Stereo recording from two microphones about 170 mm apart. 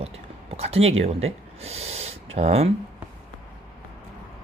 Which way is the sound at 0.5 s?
35° right (ahead or behind).